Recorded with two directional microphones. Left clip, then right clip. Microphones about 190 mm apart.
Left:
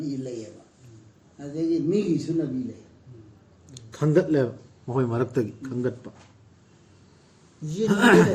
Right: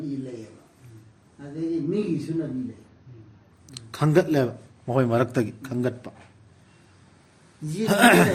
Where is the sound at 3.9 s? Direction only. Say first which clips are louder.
Right 1 dB; 65° right (ahead or behind).